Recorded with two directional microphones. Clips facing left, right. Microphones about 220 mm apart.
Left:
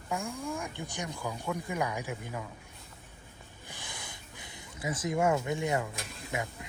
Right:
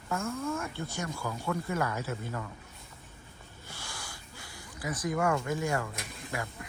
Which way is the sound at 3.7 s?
20° left (ahead or behind).